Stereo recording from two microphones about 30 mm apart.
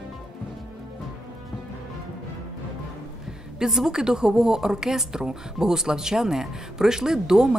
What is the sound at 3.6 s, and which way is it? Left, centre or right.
Speech, centre.